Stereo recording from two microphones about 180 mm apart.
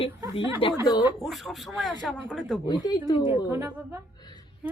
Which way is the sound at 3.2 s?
15° right (ahead or behind).